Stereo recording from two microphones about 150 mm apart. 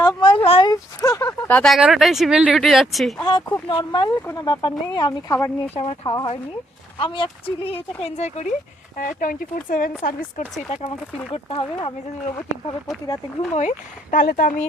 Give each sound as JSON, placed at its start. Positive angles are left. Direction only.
{"t": 0.0, "sound": "a sound", "side_deg": 30}
{"t": 0.7, "sound": "a sound", "side_deg": 20}
{"t": 1.5, "sound": "speech", "side_deg": 10}
{"t": 1.7, "sound": "speech", "side_deg": 0}
{"t": 3.2, "sound": "speech", "side_deg": 30}
{"t": 5.3, "sound": "speech", "side_deg": 20}
{"t": 5.7, "sound": "speech", "side_deg": 40}
{"t": 9.0, "sound": "speech", "side_deg": 65}
{"t": 10.7, "sound": "speech", "side_deg": 45}
{"t": 13.5, "sound": "speech", "side_deg": 55}